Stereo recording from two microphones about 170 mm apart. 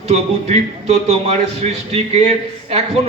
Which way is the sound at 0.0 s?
40° right (ahead or behind).